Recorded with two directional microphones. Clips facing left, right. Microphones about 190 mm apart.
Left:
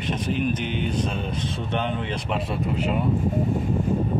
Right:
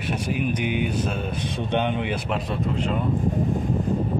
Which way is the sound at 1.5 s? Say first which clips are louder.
Right 5 dB; 20° right (ahead or behind).